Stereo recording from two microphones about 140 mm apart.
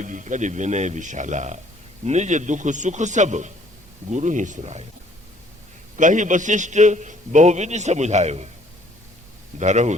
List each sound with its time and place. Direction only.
0.0 s a man's voice: 65° right (ahead or behind)
6.0 s a man's voice: 65° right (ahead or behind)
9.6 s a man's voice: 55° right (ahead or behind)